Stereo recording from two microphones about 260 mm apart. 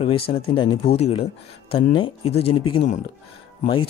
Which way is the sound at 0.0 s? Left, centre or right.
Left.